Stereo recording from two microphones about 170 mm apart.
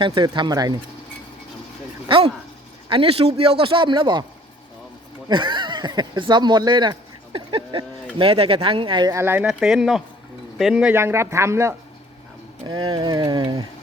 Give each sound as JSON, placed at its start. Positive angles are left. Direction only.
{"t": 0.0, "sound": "speech", "side_deg": -30}
{"t": 2.0, "sound": "a man's voice", "side_deg": -30}
{"t": 5.3, "sound": "speech", "side_deg": -30}